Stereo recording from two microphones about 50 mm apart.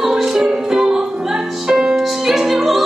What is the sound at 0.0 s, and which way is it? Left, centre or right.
Music, centre.